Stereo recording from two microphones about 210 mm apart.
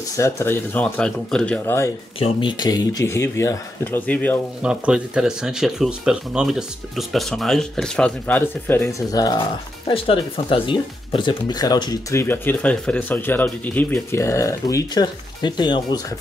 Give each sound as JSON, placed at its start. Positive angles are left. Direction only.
{"t": 0.1, "sound": "speech", "side_deg": 15}
{"t": 2.1, "sound": "speech", "side_deg": 25}
{"t": 4.6, "sound": "speech", "side_deg": -5}